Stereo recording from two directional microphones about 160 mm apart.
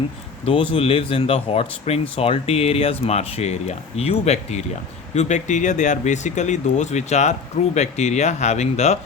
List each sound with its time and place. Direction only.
0.4 s speech: 35° left (ahead or behind)